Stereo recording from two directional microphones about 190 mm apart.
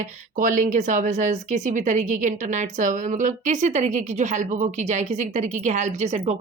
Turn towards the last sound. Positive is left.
turn(degrees=-40)  # may be behind; listen again after turning